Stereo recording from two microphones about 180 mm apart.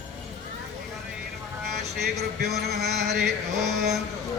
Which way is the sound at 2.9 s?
65° right (ahead or behind).